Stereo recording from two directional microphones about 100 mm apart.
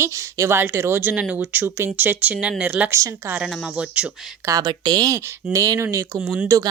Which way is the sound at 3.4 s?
Centre (ahead or behind).